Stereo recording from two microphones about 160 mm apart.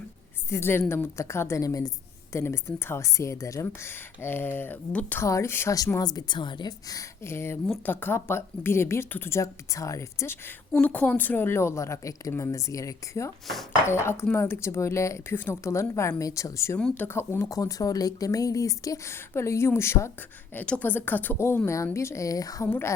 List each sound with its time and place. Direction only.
0.5 s a woman's voice: 15° left (ahead or behind)